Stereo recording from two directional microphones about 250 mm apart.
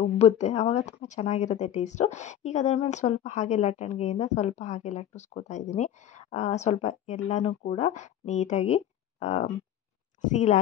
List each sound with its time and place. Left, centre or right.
0.0 s speech: left